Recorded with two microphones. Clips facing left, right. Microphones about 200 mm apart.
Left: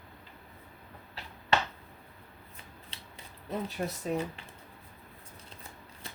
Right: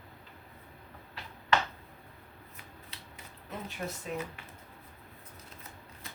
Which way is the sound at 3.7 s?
35° left (ahead or behind).